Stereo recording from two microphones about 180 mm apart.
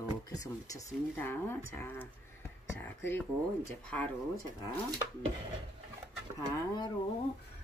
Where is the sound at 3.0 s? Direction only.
10° left (ahead or behind).